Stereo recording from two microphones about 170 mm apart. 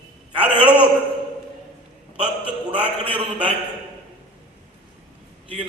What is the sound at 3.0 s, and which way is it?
Speech, 30° right (ahead or behind).